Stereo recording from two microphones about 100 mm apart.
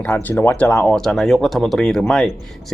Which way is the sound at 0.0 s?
15° left (ahead or behind).